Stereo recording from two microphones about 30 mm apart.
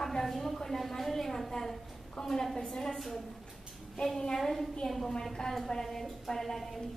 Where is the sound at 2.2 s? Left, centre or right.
Left.